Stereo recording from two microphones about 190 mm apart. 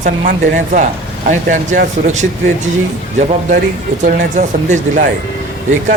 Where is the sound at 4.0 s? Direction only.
40° right (ahead or behind).